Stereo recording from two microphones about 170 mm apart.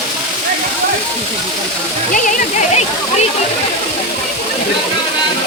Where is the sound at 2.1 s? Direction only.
45° left (ahead or behind).